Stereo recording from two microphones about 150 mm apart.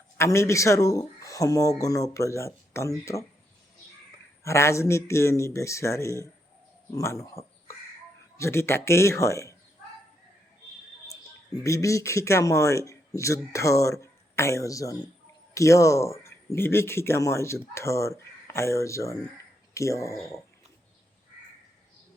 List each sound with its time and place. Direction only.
0.2 s speech: 20° left (ahead or behind)
4.4 s speech: 20° left (ahead or behind)
11.6 s speech: 20° left (ahead or behind)